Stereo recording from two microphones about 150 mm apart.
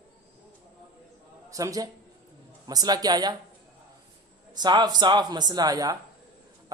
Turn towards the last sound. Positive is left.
turn(degrees=-25)  # may be behind; listen again after turning